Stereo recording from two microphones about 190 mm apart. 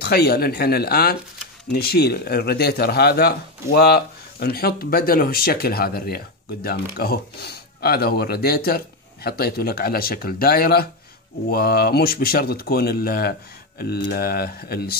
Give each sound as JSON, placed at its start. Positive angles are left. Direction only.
{"t": 0.0, "sound": "speech", "side_deg": 55}